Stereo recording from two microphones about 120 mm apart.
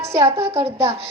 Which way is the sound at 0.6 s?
55° right (ahead or behind).